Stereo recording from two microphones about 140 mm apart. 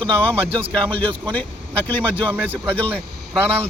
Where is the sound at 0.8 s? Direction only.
40° right (ahead or behind).